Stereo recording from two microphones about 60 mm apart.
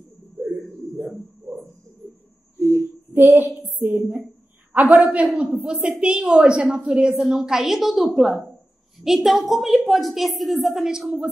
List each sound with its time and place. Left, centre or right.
3.1 s a woman's voice: right; by 11.2 s centre